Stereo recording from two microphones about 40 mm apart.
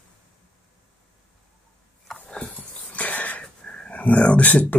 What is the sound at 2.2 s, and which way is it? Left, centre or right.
Dog, left.